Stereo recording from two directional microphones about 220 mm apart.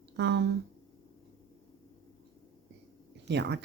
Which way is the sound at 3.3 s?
50° right (ahead or behind).